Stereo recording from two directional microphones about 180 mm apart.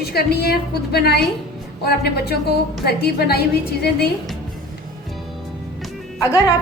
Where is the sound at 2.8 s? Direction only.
60° left (ahead or behind).